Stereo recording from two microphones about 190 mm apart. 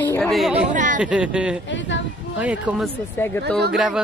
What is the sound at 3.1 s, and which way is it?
Speech, 10° left (ahead or behind).